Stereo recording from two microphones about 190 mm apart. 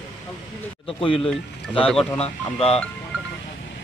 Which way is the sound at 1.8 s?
5° left (ahead or behind).